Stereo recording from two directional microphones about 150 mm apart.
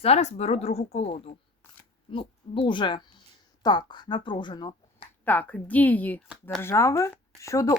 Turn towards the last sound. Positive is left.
turn(degrees=20)  # may be behind; listen again after turning